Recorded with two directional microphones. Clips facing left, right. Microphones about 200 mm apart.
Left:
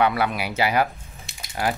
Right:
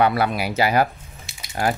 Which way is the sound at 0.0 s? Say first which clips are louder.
Right 2 dB; 40° right (ahead or behind).